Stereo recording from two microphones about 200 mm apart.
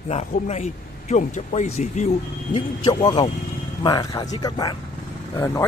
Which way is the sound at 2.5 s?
20° left (ahead or behind).